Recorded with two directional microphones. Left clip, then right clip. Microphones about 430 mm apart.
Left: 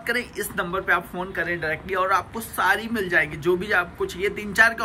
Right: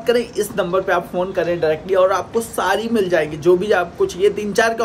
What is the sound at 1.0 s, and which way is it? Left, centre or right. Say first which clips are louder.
Speech: right 8 dB; right.